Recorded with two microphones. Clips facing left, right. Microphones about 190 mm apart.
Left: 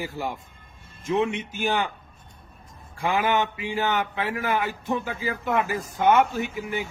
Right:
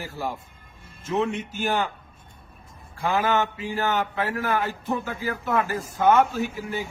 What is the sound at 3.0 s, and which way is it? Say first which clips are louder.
A man's voice: even; 15° left (ahead or behind).